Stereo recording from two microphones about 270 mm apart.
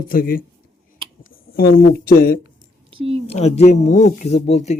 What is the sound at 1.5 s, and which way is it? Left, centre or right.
Speech, left.